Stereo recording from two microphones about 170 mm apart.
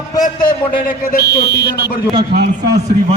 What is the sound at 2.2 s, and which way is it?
Speech, 65° right (ahead or behind).